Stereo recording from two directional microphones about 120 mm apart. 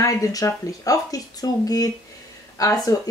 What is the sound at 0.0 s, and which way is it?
Speech, 30° left (ahead or behind).